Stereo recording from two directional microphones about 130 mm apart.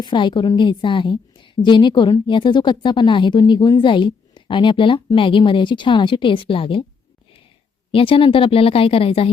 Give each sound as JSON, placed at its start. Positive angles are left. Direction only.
{"t": 0.0, "sound": "a woman's voice", "side_deg": 35}
{"t": 7.9, "sound": "speech", "side_deg": 40}